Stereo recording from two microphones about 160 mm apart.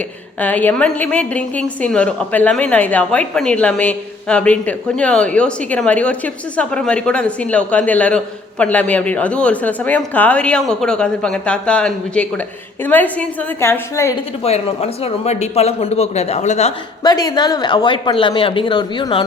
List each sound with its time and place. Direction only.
0.3 s a woman's voice: 10° left (ahead or behind)
14.4 s speech: 40° left (ahead or behind)
17.0 s speech: 25° left (ahead or behind)